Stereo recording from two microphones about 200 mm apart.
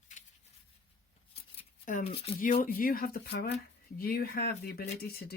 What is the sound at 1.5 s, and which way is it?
Shuffling cards, 35° left (ahead or behind).